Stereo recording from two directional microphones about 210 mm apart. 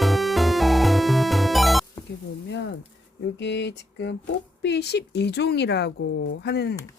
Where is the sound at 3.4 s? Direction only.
55° left (ahead or behind).